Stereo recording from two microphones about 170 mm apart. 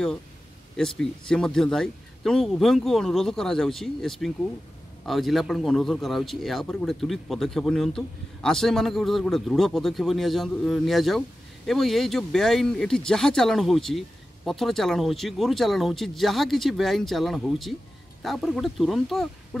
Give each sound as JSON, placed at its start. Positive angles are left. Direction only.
{"t": 0.7, "sound": "a man's voice", "side_deg": 5}